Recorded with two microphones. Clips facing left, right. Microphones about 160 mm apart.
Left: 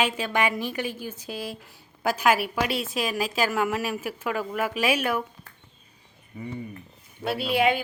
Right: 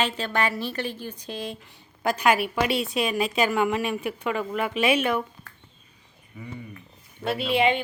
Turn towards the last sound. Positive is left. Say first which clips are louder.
# right 1 dB
turn(degrees=5)  # may be behind; listen again after turning